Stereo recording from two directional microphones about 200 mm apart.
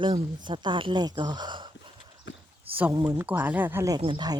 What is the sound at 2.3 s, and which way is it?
Walk, 65° left (ahead or behind).